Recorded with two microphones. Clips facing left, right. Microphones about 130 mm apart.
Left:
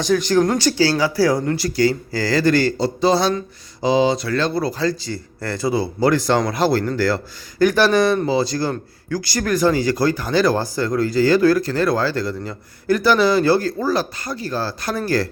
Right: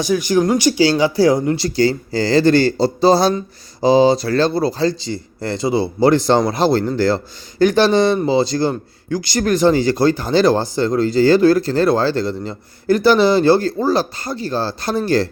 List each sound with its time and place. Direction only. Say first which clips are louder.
0.0 s speech: right 1 dB; 10° right (ahead or behind); by 15.3 s 25° right (ahead or behind)